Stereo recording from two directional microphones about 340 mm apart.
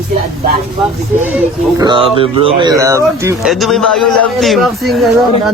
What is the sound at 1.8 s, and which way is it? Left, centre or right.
Speech, centre.